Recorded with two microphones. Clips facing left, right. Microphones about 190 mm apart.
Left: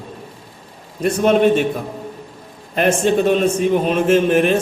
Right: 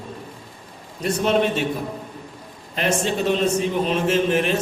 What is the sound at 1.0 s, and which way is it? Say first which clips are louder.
Speech: left 6 dB; 50° left (ahead or behind).